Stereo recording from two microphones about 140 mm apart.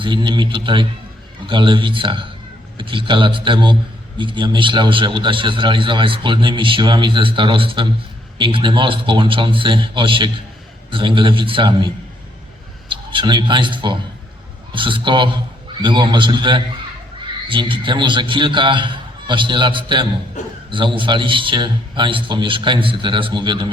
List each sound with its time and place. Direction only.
0.0 s a man's voice: 35° right (ahead or behind)
12.9 s a man's voice: 35° right (ahead or behind)